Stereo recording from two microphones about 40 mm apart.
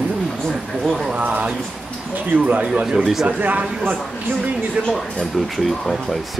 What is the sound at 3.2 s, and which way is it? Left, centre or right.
Speech, right.